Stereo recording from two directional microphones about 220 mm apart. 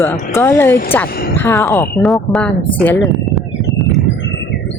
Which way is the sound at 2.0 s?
Centre (ahead or behind).